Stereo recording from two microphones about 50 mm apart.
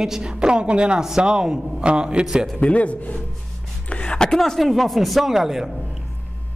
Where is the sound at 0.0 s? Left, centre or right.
Centre.